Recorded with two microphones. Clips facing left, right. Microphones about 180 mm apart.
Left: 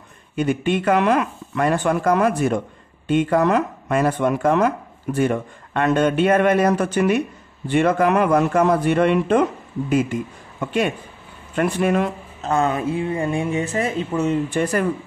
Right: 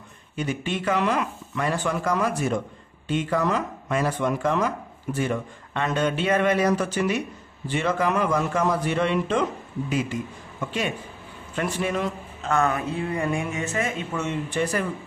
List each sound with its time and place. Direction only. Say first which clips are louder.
0.4 s speech: left 7 dB; 55° left (ahead or behind)
11.5 s speech: left 7 dB; 60° left (ahead or behind)
12.4 s speech: left 3 dB; 30° left (ahead or behind)
14.5 s speech: left 5 dB; 50° left (ahead or behind)